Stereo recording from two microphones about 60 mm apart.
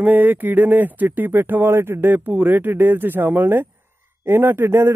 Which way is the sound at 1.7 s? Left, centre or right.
Right.